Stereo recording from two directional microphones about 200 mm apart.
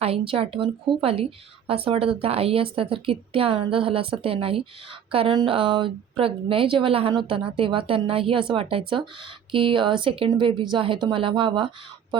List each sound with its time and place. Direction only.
0.0 s a woman's voice: 30° right (ahead or behind)